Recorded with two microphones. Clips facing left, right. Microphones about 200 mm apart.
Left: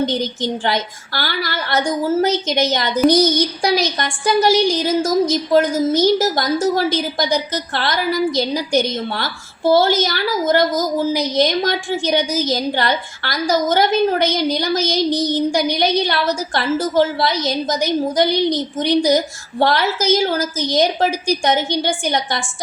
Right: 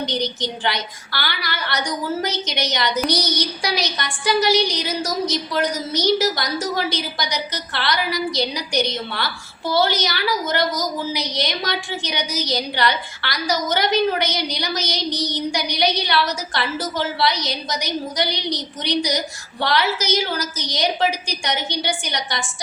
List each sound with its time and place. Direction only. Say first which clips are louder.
0.0 s a woman's voice: left 5 dB; 50° left (ahead or behind)